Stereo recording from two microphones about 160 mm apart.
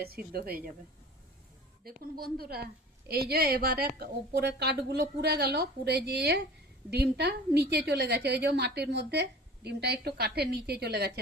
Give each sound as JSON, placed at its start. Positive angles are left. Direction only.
{"t": 0.0, "sound": "a woman's voice", "side_deg": -75}
{"t": 1.8, "sound": "a woman's voice", "side_deg": -65}
{"t": 3.9, "sound": "a woman's voice", "side_deg": -85}